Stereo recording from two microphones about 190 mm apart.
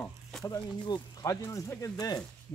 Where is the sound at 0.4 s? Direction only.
20° left (ahead or behind).